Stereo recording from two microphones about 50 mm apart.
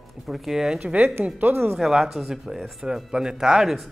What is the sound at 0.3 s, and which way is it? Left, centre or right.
Speech, centre.